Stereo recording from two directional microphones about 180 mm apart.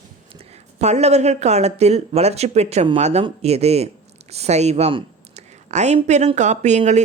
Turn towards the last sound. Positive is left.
turn(degrees=-40)  # may be behind; listen again after turning